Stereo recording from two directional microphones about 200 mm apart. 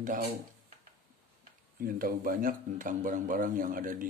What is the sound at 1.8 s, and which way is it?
Speech, 45° right (ahead or behind).